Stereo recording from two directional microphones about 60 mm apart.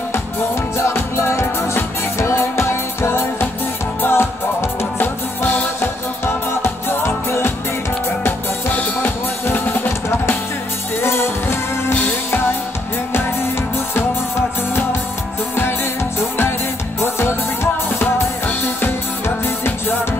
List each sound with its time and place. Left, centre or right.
0.7 s music: left
8.3 s music: left
11.9 s music: left
14.7 s music: left
18.8 s music: left